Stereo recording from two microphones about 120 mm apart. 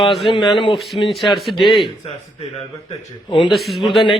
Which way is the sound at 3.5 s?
Centre (ahead or behind).